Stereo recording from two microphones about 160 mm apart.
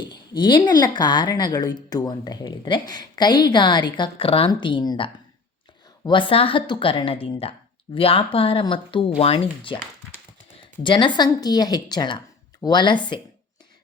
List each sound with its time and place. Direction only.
0.0 s a woman's voice: 30° left (ahead or behind)
10.8 s a woman's voice: 30° left (ahead or behind)